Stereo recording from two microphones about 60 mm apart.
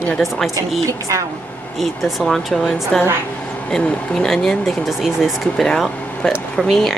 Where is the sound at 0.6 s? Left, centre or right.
Right.